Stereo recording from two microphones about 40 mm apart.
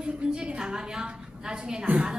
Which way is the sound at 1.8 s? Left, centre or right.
Right.